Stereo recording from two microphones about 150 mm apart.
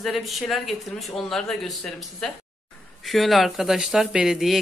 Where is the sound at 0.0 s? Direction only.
Centre (ahead or behind).